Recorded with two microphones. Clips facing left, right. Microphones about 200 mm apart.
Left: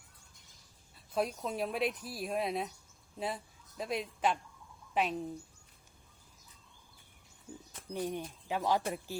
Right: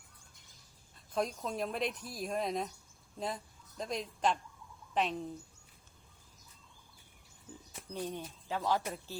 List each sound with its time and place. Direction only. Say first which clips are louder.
1.1 s speech: left 1 dB; 5° left (ahead or behind)
7.9 s speech: left 3 dB; 15° left (ahead or behind)